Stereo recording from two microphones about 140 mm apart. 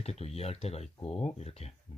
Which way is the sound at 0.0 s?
45° left (ahead or behind).